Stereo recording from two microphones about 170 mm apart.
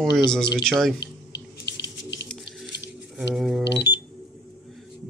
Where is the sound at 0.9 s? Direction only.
75° left (ahead or behind).